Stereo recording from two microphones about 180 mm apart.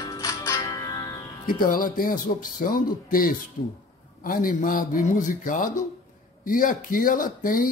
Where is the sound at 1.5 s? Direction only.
55° left (ahead or behind).